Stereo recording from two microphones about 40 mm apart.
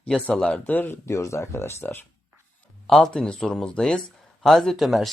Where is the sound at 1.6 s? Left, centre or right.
Left.